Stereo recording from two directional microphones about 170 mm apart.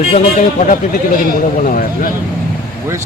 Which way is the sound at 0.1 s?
50° left (ahead or behind).